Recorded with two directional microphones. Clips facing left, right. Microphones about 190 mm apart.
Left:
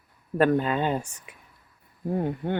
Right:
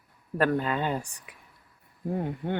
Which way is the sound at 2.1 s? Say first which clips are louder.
Left 4 dB; 45° left (ahead or behind).